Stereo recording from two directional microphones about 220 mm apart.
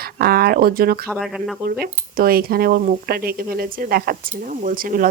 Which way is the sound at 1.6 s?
45° right (ahead or behind).